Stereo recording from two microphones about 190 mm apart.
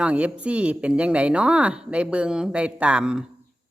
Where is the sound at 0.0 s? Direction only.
5° right (ahead or behind).